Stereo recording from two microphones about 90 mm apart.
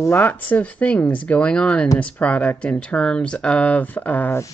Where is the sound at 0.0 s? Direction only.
25° left (ahead or behind).